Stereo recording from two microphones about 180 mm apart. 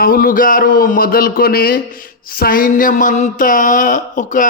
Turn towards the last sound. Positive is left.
turn(degrees=45)  # may be behind; listen again after turning